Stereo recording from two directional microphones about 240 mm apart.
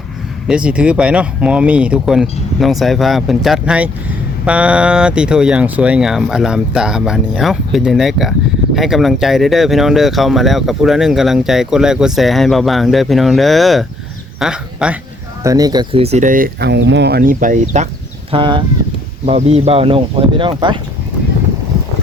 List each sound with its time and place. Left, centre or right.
0.4 s speech: centre
15.4 s speech: centre; by 17.8 s right
18.3 s speech: right